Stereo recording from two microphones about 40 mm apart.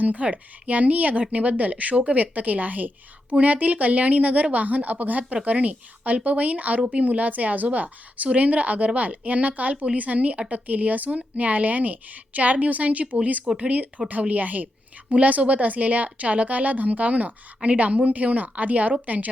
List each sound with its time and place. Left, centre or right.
0.0 s a woman's voice: right